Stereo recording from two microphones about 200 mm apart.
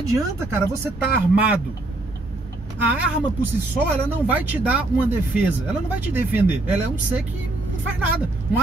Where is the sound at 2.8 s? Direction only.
5° right (ahead or behind).